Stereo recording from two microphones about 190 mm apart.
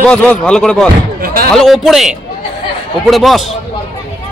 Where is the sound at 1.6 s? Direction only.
Centre (ahead or behind).